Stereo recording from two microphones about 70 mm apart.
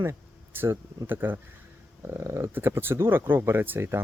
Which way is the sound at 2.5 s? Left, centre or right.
Right.